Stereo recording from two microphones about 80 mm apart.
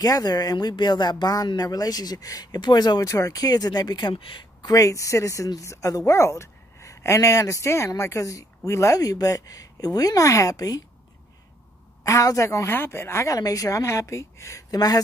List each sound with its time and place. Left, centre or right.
0.0 s speech: left
1.6 s speech: left
3.1 s speech: left
4.6 s a woman's voice: left
12.0 s speech: left
14.7 s speech: left